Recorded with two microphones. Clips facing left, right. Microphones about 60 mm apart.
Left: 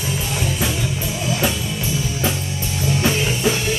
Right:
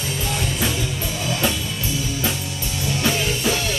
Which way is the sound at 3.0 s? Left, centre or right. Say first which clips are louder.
Left 2 dB; centre.